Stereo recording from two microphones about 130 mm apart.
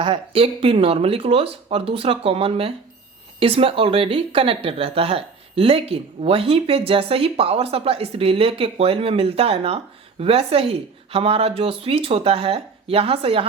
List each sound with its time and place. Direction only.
0.0 s speech: 45° right (ahead or behind)